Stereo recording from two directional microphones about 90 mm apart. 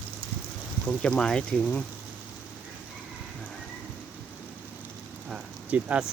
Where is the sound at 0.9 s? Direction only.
10° left (ahead or behind).